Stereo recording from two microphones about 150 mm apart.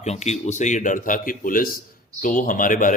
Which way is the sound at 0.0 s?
45° left (ahead or behind).